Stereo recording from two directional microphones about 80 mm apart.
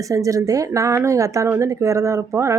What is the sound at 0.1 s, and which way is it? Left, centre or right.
A woman's voice, right.